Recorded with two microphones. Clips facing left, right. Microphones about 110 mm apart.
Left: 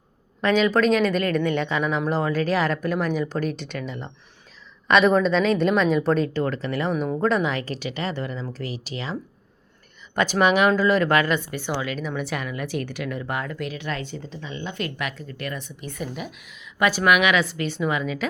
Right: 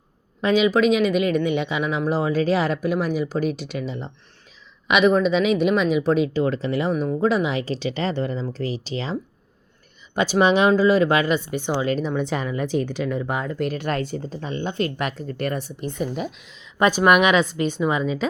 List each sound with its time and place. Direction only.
0.4 s speech: 10° right (ahead or behind)
4.9 s speech: 5° right (ahead or behind)
7.2 s speech: 5° right (ahead or behind); by 9.1 s 30° right (ahead or behind)
10.2 s speech: 20° right (ahead or behind)
11.9 s speech: 30° right (ahead or behind)
13.6 s speech: 45° right (ahead or behind)
14.7 s speech: 30° right (ahead or behind)
17.4 s speech: 15° right (ahead or behind)